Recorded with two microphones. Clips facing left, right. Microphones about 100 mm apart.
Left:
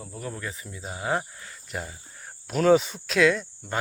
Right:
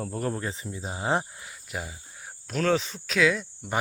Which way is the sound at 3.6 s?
15° right (ahead or behind).